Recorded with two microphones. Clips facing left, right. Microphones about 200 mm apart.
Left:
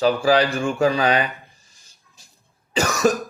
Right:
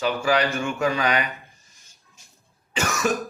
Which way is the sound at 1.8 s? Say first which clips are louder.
Left 1 dB; 35° left (ahead or behind).